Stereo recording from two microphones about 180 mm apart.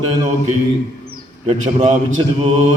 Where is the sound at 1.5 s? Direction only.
35° right (ahead or behind).